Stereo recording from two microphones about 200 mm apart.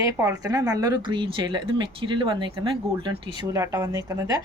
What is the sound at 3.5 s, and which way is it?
Speech, 15° right (ahead or behind).